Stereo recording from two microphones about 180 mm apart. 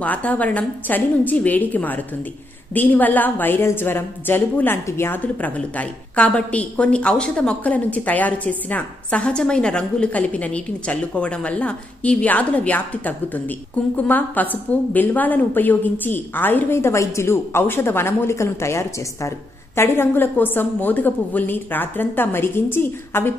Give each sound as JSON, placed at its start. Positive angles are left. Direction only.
{"t": 0.0, "sound": "a woman's voice", "side_deg": 10}